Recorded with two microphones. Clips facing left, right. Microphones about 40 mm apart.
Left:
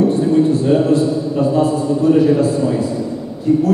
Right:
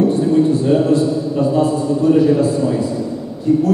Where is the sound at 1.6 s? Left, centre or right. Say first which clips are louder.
Even; centre.